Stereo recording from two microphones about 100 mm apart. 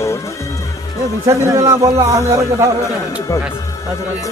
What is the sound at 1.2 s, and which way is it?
A man's voice, 30° right (ahead or behind).